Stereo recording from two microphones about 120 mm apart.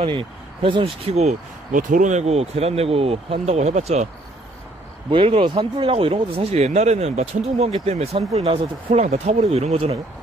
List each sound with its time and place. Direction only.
0.0 s speech: 45° right (ahead or behind)
1.1 s speech: 80° right
5.1 s speech: 50° right (ahead or behind)